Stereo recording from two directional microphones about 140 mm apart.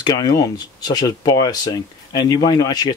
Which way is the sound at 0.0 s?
30° left (ahead or behind).